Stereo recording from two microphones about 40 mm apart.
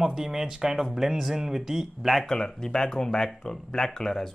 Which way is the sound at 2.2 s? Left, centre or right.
Centre.